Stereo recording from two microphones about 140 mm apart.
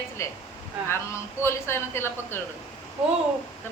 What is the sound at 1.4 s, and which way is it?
Speech, 15° left (ahead or behind).